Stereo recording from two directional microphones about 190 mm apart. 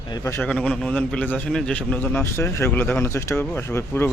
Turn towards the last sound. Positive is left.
turn(degrees=10)  # may be behind; listen again after turning